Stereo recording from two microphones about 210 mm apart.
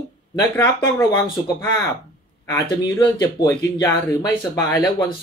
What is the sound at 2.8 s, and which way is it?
Speech, 15° left (ahead or behind).